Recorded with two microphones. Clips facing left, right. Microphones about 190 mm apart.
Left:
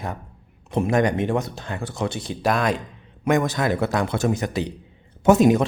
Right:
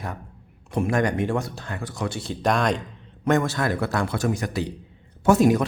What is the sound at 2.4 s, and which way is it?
A man's voice, 5° left (ahead or behind).